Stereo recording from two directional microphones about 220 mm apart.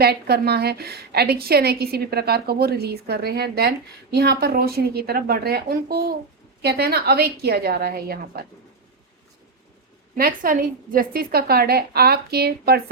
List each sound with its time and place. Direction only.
0.0 s a woman's voice: 45° right (ahead or behind)
10.2 s a woman's voice: 40° right (ahead or behind)